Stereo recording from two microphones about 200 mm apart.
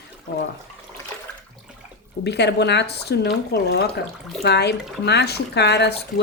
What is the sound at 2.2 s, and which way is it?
Speech, 55° left (ahead or behind).